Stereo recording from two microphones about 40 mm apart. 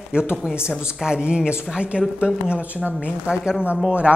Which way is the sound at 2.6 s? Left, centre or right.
Right.